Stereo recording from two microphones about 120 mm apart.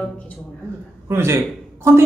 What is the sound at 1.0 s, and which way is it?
Speech, 20° right (ahead or behind).